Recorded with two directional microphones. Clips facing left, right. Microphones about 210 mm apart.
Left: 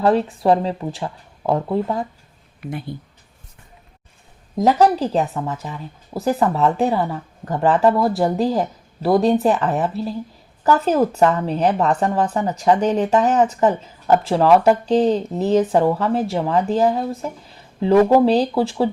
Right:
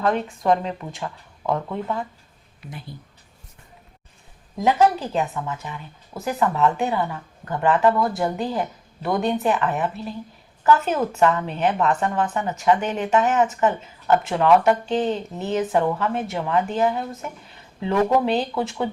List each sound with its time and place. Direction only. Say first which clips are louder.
0.0 s a woman's voice: left 5 dB; 35° left (ahead or behind)
2.6 s speech: left 10 dB; 60° left (ahead or behind)
4.5 s a woman's voice: left 3 dB; 35° left (ahead or behind)